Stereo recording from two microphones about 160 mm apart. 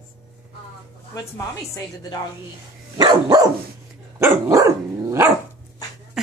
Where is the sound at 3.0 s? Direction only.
25° right (ahead or behind).